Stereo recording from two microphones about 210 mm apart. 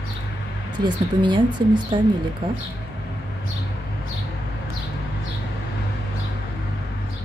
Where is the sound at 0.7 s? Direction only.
20° right (ahead or behind).